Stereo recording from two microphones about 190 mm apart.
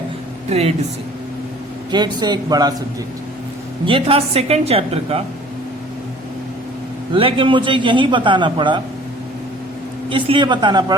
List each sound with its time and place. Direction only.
0.5 s a woman's voice: 35° right (ahead or behind)
1.9 s a man's voice: 25° right (ahead or behind)
3.8 s a woman's voice: 30° right (ahead or behind)
7.1 s a man's voice: 25° right (ahead or behind)
10.1 s a man's voice: 25° right (ahead or behind)